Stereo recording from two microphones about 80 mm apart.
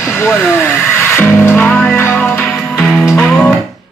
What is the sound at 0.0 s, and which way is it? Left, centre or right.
Music, left.